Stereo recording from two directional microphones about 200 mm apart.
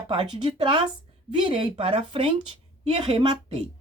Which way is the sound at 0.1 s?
25° right (ahead or behind).